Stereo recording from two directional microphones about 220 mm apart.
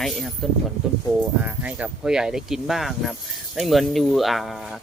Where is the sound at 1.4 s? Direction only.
5° right (ahead or behind).